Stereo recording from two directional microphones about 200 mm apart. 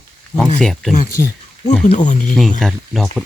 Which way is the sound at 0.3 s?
Centre (ahead or behind).